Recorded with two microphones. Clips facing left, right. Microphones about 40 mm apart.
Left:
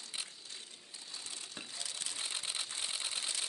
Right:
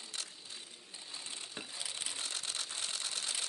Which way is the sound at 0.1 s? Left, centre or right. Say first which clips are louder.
Left 1 dB; centre.